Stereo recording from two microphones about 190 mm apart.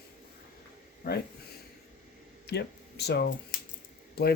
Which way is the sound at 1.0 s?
45° left (ahead or behind).